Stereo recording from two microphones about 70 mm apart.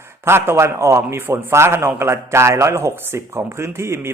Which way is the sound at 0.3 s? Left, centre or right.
Right.